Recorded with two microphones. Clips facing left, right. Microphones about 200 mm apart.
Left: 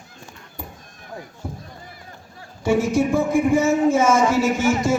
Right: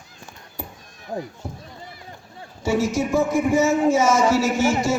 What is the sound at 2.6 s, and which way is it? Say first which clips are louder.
A man's voice: left 3 dB; 55° left (ahead or behind).